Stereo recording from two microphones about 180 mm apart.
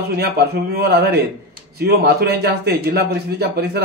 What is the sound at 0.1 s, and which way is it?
A man's voice, 60° right (ahead or behind).